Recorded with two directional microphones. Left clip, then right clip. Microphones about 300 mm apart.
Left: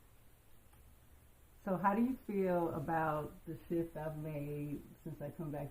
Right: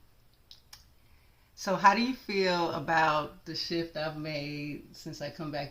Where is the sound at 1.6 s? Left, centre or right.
Centre.